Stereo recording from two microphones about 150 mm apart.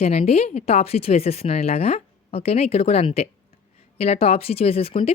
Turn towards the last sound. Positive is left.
turn(degrees=40)  # may be behind; listen again after turning